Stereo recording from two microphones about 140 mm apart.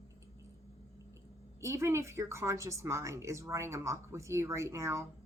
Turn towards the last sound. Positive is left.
turn(degrees=-20)  # may be behind; listen again after turning